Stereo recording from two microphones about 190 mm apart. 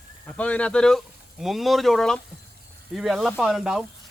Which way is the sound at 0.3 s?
5° left (ahead or behind).